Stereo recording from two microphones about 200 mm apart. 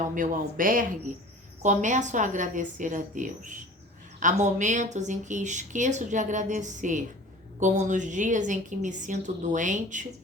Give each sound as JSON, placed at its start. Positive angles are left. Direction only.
{"t": 0.1, "sound": "a woman's voice", "side_deg": -40}